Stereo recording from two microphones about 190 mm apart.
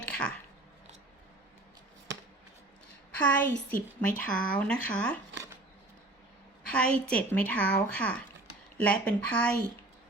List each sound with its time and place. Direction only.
0.0 s a sound: 5° left (ahead or behind)
3.2 s a woman's voice: 10° left (ahead or behind)
3.8 s a woman's voice: 45° left (ahead or behind)
4.3 s speech: 5° left (ahead or behind)
6.7 s a woman's voice: 5° left (ahead or behind)